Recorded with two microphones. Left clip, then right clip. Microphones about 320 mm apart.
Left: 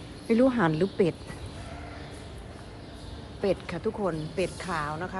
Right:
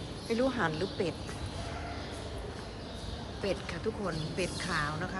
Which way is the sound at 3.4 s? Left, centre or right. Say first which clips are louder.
Left 7 dB; centre.